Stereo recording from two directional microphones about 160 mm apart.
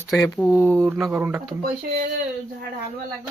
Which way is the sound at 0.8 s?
5° right (ahead or behind).